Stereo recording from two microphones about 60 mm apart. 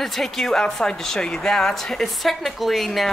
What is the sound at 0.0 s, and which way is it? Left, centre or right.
A woman's voice, centre.